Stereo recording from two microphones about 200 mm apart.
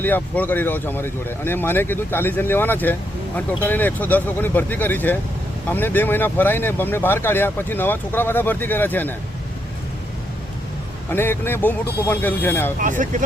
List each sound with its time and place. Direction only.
0.0 s speech: 10° left (ahead or behind)
11.1 s speech: 10° left (ahead or behind)
12.8 s speech: 40° right (ahead or behind)